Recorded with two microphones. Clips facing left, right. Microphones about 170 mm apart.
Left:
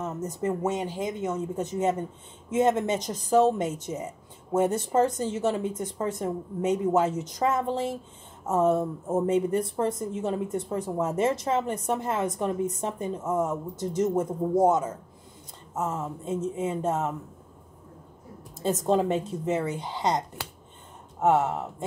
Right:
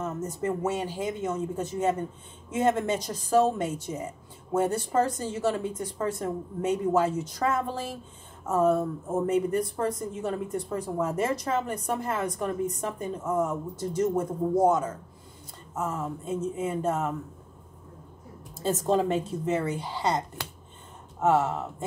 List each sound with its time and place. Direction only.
0.7 s a woman's voice: 20° left (ahead or behind)
18.6 s a woman's voice: 15° left (ahead or behind)